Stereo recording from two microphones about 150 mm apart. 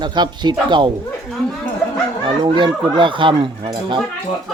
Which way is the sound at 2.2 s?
30° right (ahead or behind).